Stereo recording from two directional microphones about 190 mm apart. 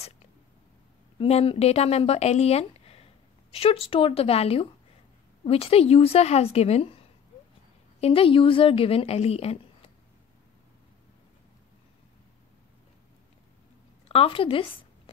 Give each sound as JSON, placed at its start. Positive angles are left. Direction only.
{"t": 1.1, "sound": "a woman's voice", "side_deg": 30}
{"t": 14.0, "sound": "speech", "side_deg": 30}